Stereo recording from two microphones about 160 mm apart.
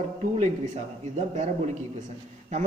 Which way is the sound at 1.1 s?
45° right (ahead or behind).